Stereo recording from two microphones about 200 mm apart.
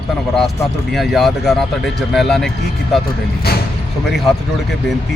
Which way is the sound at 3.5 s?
50° left (ahead or behind).